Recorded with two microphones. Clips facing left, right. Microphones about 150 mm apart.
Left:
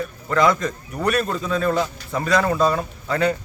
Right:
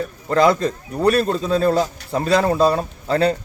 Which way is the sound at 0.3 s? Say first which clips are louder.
Right 3 dB; 30° right (ahead or behind).